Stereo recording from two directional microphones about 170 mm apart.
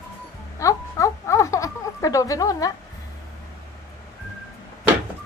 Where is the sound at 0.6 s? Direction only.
20° left (ahead or behind).